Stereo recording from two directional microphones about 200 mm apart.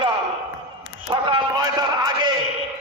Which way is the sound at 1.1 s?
20° right (ahead or behind).